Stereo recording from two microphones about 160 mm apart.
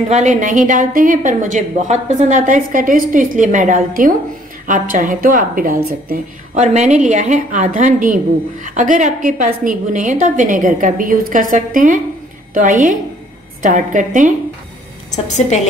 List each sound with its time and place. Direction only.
0.1 s a woman's voice: 50° right (ahead or behind)